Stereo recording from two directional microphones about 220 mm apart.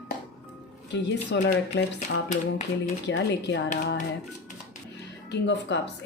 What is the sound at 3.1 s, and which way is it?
Speech, 55° left (ahead or behind).